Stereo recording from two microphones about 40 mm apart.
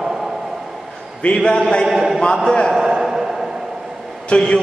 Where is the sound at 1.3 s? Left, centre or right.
Left.